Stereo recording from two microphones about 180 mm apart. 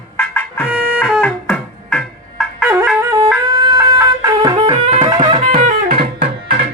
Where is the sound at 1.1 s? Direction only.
5° left (ahead or behind).